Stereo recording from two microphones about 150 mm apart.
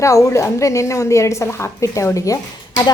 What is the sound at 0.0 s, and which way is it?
A woman's voice, 20° left (ahead or behind).